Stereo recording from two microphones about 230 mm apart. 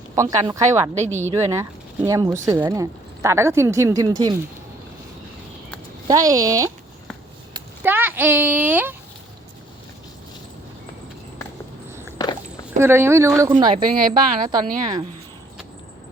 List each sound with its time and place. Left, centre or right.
0.2 s speech: centre
6.1 s speech: centre
7.5 s a sound: centre
12.1 s walk: centre
12.8 s a woman's voice: centre